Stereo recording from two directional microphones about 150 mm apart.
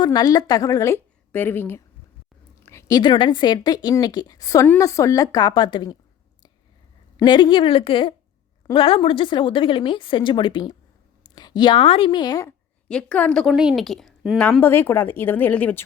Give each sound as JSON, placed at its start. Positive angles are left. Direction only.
{"t": 0.0, "sound": "a woman's voice", "side_deg": 25}
{"t": 2.6, "sound": "a sound", "side_deg": 20}
{"t": 3.0, "sound": "a woman's voice", "side_deg": 30}
{"t": 7.2, "sound": "a woman's voice", "side_deg": 30}
{"t": 12.9, "sound": "a woman's voice", "side_deg": 5}
{"t": 13.5, "sound": "a woman's voice", "side_deg": -5}